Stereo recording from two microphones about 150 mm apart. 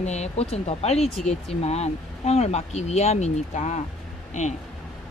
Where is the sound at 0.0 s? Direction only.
50° left (ahead or behind).